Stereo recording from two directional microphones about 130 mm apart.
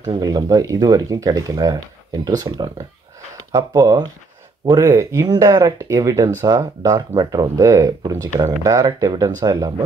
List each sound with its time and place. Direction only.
0.0 s speech: 30° right (ahead or behind)